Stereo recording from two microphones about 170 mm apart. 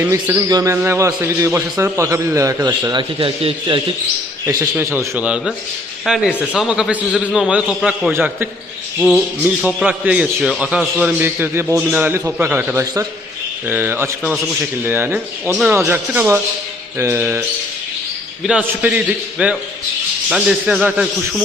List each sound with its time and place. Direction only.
0.0 s a man's voice: 15° right (ahead or behind); by 3.8 s 30° right (ahead or behind)
4.8 s a man's voice: 15° right (ahead or behind)
18.4 s a man's voice: 5° right (ahead or behind)